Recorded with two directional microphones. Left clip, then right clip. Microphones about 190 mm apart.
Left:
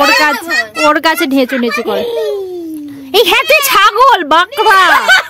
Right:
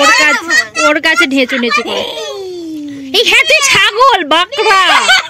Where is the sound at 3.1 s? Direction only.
15° left (ahead or behind).